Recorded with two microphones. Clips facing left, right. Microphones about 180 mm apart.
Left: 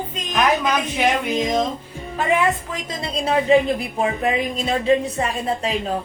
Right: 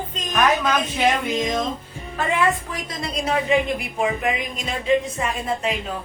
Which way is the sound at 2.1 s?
20° left (ahead or behind).